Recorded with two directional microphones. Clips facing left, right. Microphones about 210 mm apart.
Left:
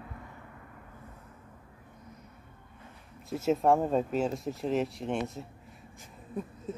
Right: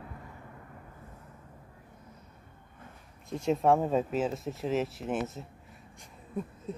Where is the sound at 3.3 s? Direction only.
5° left (ahead or behind).